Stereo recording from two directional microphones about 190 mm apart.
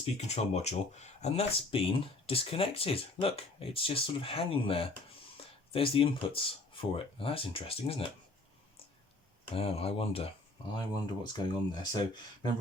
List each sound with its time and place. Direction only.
0.0 s speech: 35° left (ahead or behind)
9.6 s speech: 30° left (ahead or behind)